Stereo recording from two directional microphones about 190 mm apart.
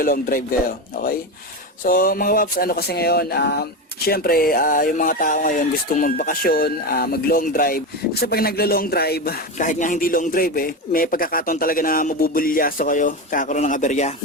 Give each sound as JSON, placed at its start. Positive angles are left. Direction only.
{"t": 0.0, "sound": "speech", "side_deg": 50}
{"t": 1.8, "sound": "speech", "side_deg": 50}